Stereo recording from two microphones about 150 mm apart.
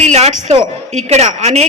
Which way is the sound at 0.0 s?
50° right (ahead or behind).